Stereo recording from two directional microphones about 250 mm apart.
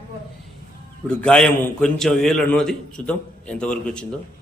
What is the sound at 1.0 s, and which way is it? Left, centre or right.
Speech, centre.